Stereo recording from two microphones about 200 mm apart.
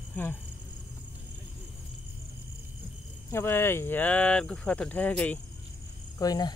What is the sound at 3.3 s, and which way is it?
Speech, 10° left (ahead or behind).